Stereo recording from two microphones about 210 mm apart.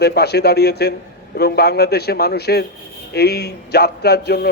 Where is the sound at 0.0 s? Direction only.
50° left (ahead or behind).